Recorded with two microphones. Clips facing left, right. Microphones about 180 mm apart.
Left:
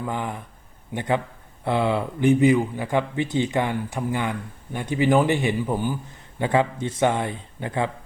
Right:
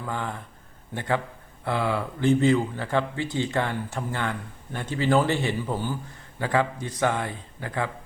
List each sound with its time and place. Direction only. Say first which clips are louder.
0.0 s a man's voice: left 3 dB; 15° left (ahead or behind)